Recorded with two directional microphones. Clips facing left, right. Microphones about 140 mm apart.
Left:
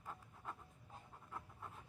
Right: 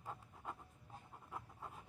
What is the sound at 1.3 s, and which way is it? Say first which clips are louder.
Pant: right 2 dB; 15° right (ahead or behind).